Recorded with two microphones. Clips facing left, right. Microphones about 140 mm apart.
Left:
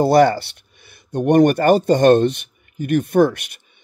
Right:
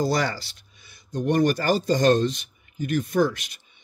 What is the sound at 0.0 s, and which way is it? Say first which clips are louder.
Speech: left 11 dB; 55° left (ahead or behind).